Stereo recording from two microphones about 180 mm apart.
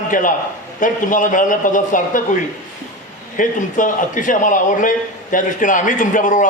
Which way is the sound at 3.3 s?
45° left (ahead or behind).